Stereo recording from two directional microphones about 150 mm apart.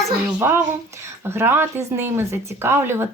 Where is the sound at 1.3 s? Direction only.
15° right (ahead or behind).